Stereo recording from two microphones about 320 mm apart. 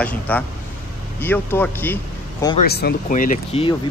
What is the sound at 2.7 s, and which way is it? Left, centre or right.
Speech, left.